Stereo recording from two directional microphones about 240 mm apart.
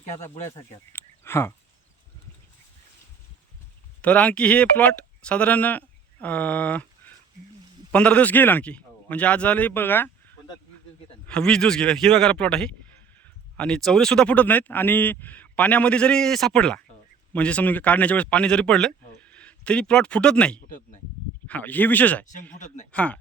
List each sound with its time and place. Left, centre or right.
0.9 s a sound: centre
4.0 s speech: centre
20.7 s speech: left
21.4 s speech: centre
22.5 s speech: left
22.9 s speech: centre